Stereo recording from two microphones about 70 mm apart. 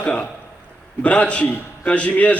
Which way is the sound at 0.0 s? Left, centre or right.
Centre.